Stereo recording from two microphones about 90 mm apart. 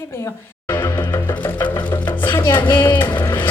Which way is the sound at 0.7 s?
35° left (ahead or behind).